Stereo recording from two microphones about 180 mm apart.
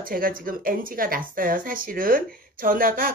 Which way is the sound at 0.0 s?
50° right (ahead or behind).